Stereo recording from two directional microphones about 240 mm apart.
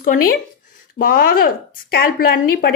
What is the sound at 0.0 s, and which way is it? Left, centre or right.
Speech, left.